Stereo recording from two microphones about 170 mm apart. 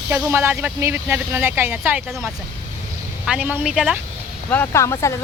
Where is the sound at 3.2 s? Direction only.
5° right (ahead or behind).